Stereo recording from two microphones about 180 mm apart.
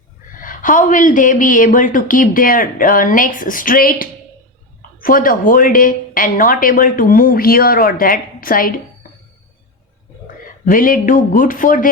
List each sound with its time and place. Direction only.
0.3 s a woman's voice: 50° left (ahead or behind)
10.4 s a woman's voice: 50° left (ahead or behind)